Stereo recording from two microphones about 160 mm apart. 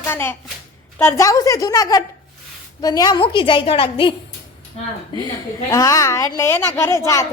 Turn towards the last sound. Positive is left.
turn(degrees=20)  # may be behind; listen again after turning